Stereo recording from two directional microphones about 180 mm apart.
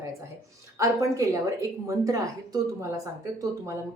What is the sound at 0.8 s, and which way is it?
A woman's voice, 20° right (ahead or behind).